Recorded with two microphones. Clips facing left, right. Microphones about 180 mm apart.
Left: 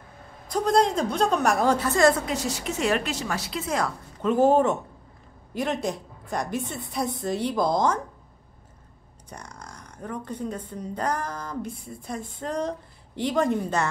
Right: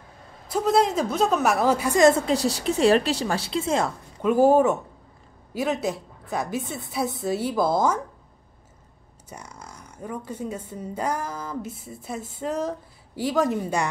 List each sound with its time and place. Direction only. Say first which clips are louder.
0.5 s a woman's voice: right 1 dB; 5° right (ahead or behind); by 3.9 s 25° right (ahead or behind)
4.2 s a woman's voice: right 2 dB; 10° right (ahead or behind)
9.3 s speech: right 1 dB; 5° right (ahead or behind)